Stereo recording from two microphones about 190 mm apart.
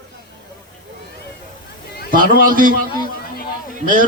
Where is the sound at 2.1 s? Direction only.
45° right (ahead or behind).